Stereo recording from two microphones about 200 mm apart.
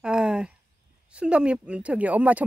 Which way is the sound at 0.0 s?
5° right (ahead or behind).